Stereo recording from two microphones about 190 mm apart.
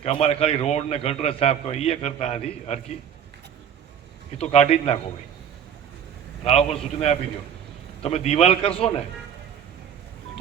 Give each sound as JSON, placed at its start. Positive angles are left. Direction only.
{"t": 0.0, "sound": "a man's voice", "side_deg": 35}
{"t": 4.4, "sound": "a man's voice", "side_deg": 35}
{"t": 6.4, "sound": "a man's voice", "side_deg": 35}